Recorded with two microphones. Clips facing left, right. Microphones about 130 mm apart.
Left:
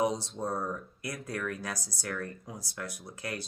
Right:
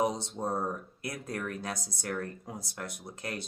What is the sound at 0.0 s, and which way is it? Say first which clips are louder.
Speech: even; 25° right (ahead or behind).